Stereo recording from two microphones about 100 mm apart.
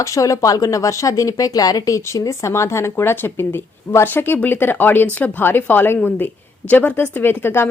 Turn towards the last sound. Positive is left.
turn(degrees=20)  # may be behind; listen again after turning